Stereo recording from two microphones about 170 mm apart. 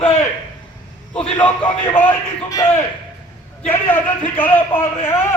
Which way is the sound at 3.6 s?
10° left (ahead or behind).